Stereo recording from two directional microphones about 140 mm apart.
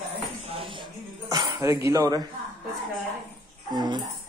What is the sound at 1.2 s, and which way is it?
Speech, 20° right (ahead or behind).